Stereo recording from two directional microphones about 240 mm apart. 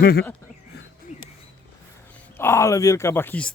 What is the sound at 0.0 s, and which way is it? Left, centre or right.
Speech, left.